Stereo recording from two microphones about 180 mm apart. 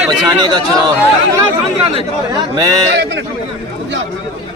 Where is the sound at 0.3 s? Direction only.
20° right (ahead or behind).